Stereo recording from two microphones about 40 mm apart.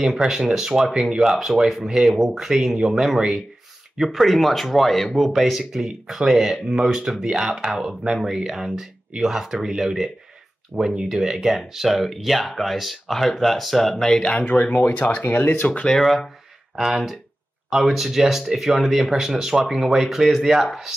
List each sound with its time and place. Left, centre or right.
0.0 s speech: centre
14.4 s speech: left
15.9 s speech: centre